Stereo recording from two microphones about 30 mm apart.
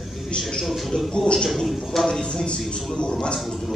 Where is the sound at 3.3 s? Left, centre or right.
Centre.